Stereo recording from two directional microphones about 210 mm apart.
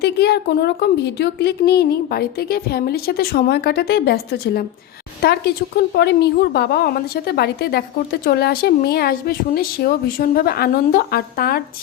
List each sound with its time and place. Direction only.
0.0 s a woman's voice: 50° left (ahead or behind)